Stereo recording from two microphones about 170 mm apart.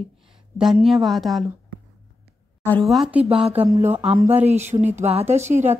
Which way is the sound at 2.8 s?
Centre (ahead or behind).